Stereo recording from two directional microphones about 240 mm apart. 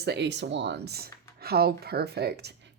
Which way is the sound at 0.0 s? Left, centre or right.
Right.